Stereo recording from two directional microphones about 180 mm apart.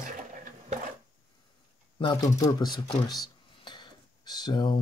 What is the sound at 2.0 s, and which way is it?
Speech, 20° left (ahead or behind).